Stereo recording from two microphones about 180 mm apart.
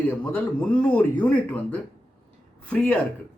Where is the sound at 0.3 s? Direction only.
5° left (ahead or behind).